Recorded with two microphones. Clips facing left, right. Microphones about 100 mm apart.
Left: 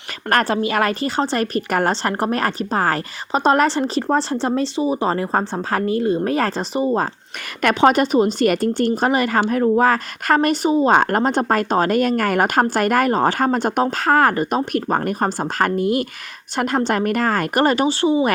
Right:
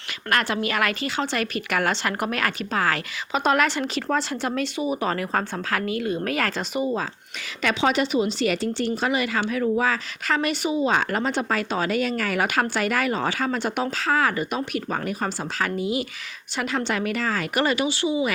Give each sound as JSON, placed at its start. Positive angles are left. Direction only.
{"t": 0.3, "sound": "a woman's voice", "side_deg": 40}
{"t": 7.6, "sound": "speech", "side_deg": 50}